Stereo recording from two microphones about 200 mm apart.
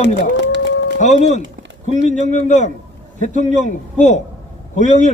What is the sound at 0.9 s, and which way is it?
A man's voice, 35° left (ahead or behind).